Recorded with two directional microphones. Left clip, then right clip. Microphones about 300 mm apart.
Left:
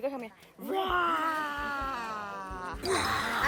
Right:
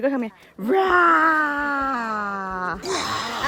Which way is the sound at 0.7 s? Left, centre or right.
Right.